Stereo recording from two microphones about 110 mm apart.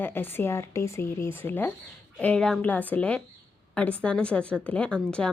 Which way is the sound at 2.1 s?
10° left (ahead or behind).